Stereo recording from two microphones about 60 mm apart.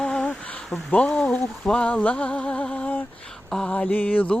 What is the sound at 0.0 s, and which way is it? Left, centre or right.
Insect, centre.